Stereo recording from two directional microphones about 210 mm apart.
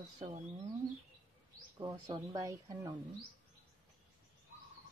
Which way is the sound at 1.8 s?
15° right (ahead or behind).